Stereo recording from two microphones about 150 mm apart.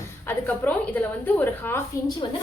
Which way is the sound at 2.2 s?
30° left (ahead or behind).